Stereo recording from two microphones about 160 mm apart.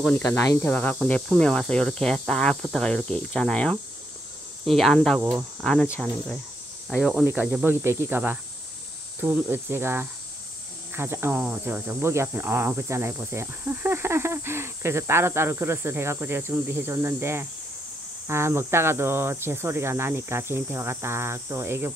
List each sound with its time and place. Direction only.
0.2 s speech: 20° left (ahead or behind); by 21.9 s 15° right (ahead or behind)